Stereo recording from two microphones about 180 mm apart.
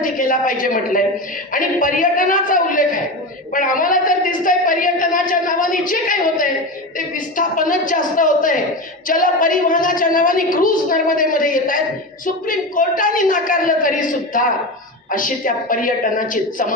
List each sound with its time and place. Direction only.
0.0 s a woman's voice: 50° left (ahead or behind)